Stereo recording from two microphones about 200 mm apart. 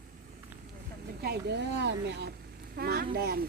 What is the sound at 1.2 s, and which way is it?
Speech, 55° right (ahead or behind).